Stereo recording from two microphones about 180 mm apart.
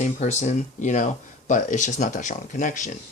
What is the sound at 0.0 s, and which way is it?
Speech, 40° left (ahead or behind).